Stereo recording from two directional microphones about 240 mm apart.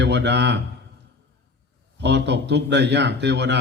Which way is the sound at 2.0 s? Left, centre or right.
Right.